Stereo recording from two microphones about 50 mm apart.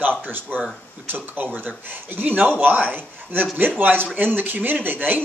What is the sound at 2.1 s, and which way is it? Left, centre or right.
Speech, right.